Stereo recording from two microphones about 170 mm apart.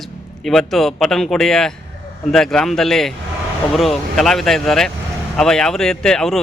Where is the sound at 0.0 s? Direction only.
Centre (ahead or behind).